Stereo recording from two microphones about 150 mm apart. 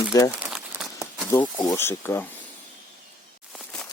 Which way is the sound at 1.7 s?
15° left (ahead or behind).